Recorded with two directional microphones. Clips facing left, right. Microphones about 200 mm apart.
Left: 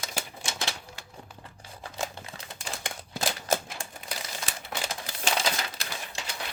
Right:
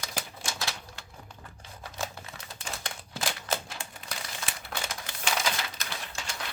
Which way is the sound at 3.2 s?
40° left (ahead or behind).